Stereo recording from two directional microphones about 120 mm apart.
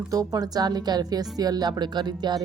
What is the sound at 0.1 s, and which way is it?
Speech, 30° right (ahead or behind).